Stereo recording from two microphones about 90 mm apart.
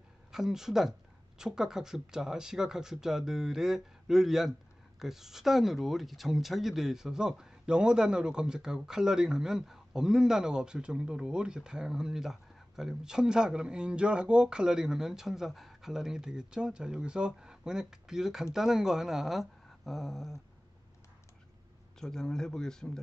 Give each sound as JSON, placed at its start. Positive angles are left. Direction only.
{"t": 0.3, "sound": "speech", "side_deg": -5}
{"t": 22.0, "sound": "speech", "side_deg": 5}